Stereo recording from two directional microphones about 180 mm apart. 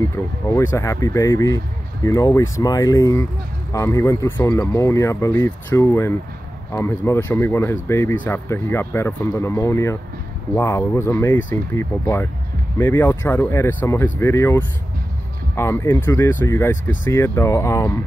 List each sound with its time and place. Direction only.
0.5 s speech: 15° left (ahead or behind)